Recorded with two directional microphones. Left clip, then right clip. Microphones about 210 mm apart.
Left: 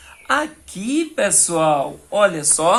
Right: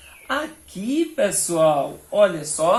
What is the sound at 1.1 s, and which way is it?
Speech, 55° left (ahead or behind).